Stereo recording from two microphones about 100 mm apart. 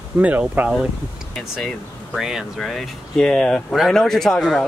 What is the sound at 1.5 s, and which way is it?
Speech, centre (ahead or behind).